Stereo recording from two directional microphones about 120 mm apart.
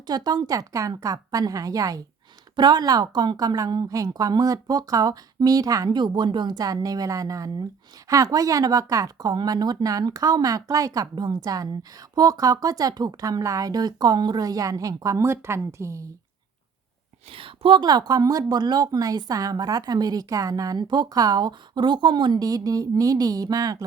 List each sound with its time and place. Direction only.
0.1 s a woman's voice: 35° right (ahead or behind)
17.3 s a woman's voice: 50° right (ahead or behind); by 23.7 s 30° right (ahead or behind)